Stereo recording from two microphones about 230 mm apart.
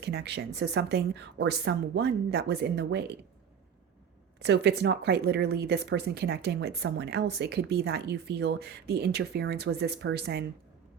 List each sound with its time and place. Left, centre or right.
0.0 s a woman's voice: right
4.4 s a woman's voice: right